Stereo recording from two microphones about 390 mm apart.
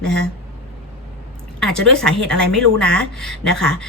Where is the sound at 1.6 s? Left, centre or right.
Centre.